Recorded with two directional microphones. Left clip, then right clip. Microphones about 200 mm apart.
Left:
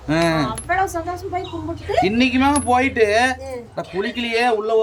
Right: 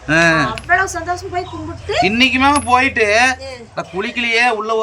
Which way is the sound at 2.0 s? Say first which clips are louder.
Right 6 dB; centre (ahead or behind).